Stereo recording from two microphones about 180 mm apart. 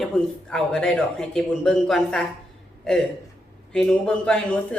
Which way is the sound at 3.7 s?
5° left (ahead or behind).